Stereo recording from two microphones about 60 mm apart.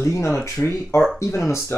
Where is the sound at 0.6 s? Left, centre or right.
Left.